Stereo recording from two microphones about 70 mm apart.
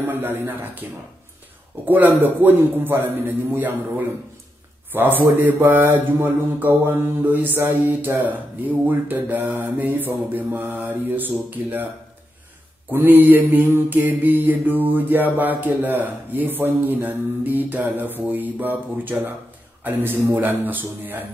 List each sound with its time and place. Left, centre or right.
0.0 s mantra: right
1.9 s mantra: right
5.4 s mantra: right
12.9 s mantra: right